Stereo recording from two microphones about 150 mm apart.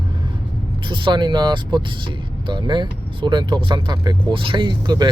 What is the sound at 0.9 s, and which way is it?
Speech, 30° right (ahead or behind).